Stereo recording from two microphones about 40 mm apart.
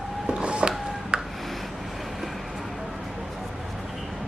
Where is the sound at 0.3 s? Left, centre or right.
Right.